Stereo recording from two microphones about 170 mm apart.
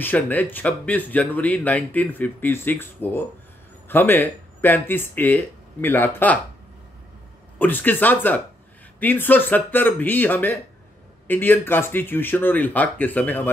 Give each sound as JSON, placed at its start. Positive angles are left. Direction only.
{"t": 0.0, "sound": "speech", "side_deg": 10}
{"t": 7.5, "sound": "speech", "side_deg": 10}